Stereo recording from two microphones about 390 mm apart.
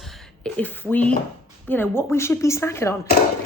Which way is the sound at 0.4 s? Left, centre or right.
Centre.